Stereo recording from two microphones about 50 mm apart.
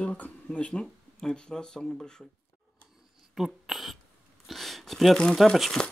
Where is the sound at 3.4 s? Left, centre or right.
Centre.